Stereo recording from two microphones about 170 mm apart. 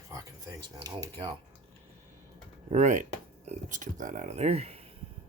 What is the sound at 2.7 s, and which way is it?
Speech, 45° right (ahead or behind).